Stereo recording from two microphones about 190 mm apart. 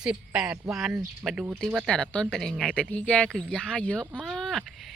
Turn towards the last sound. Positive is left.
turn(degrees=0)  # may be behind; listen again after turning